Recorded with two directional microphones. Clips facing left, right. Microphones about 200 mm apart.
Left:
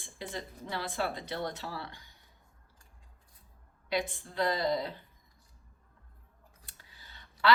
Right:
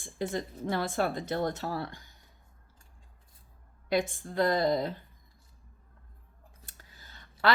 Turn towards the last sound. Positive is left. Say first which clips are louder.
# even
turn(degrees=-45)  # may be behind; listen again after turning